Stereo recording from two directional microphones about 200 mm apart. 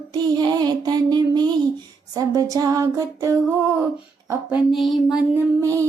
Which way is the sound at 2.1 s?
20° right (ahead or behind).